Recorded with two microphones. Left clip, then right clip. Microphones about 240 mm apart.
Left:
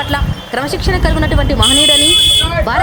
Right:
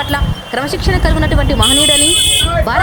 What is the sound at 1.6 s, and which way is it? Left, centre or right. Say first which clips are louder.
Speech: left 2 dB; centre.